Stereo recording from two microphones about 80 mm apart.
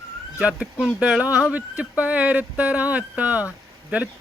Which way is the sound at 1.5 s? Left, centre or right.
Centre.